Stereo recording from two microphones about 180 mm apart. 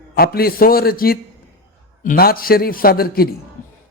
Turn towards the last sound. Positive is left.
turn(degrees=55)  # may be behind; listen again after turning